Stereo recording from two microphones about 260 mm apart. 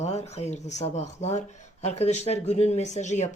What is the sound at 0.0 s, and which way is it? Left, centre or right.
Speech, left.